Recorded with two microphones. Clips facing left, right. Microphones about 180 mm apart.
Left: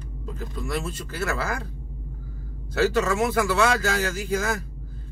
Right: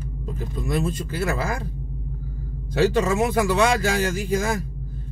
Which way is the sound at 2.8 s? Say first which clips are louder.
Right 2 dB; 20° right (ahead or behind).